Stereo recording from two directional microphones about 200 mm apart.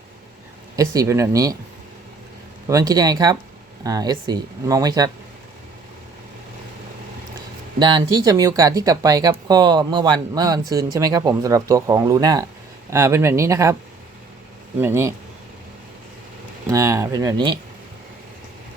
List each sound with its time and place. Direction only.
0.8 s speech: 15° right (ahead or behind)
2.6 s speech: 15° right (ahead or behind)
7.8 s speech: 20° right (ahead or behind)
14.8 s speech: 10° right (ahead or behind)
16.6 s speech: 15° right (ahead or behind)